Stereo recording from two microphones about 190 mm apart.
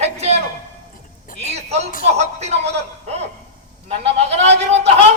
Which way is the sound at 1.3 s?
35° right (ahead or behind).